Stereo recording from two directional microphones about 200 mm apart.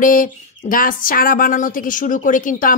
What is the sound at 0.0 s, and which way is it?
A woman's voice, 45° left (ahead or behind).